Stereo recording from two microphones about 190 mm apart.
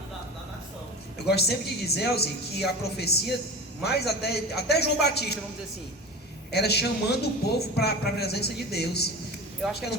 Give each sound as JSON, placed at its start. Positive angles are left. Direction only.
{"t": 1.2, "sound": "speech", "side_deg": 60}
{"t": 6.5, "sound": "speech", "side_deg": 60}
{"t": 9.6, "sound": "speech", "side_deg": 0}